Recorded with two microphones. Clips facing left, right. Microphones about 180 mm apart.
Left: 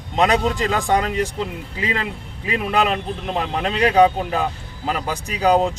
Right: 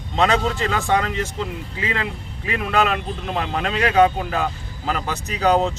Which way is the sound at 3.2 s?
15° left (ahead or behind).